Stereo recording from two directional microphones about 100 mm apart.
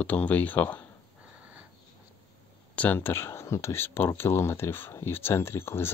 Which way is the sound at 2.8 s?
20° left (ahead or behind).